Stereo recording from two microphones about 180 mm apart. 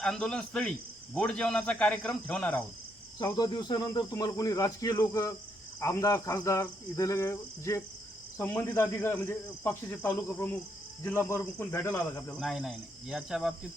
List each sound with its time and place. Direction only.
0.0 s speech: 5° left (ahead or behind)
3.3 s speech: 25° left (ahead or behind); by 13.5 s centre (ahead or behind)